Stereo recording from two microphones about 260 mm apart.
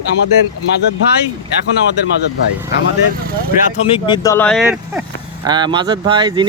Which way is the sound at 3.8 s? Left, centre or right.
Centre.